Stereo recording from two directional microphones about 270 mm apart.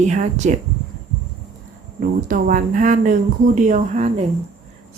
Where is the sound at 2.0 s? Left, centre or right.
Right.